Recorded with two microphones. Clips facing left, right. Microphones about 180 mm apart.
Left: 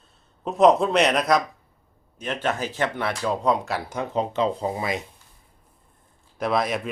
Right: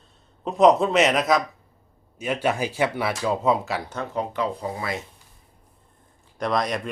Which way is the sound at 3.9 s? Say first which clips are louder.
Left 3 dB; 15° left (ahead or behind).